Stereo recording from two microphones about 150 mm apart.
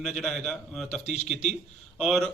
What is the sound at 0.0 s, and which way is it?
A man's voice, centre (ahead or behind).